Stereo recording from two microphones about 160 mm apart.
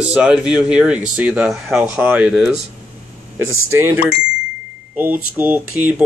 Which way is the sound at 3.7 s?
15° right (ahead or behind).